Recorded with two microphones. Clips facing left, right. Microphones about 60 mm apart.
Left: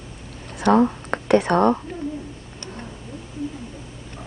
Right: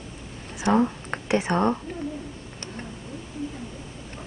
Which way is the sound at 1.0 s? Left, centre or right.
Left.